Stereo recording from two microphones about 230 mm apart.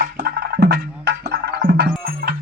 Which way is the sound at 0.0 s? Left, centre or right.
Right.